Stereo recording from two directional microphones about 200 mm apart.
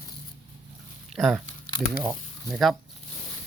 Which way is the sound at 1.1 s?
Centre (ahead or behind).